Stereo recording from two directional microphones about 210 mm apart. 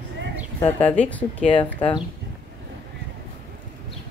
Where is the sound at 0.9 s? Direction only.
5° left (ahead or behind).